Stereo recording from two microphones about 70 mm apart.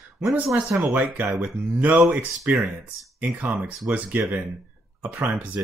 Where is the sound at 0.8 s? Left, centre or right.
Right.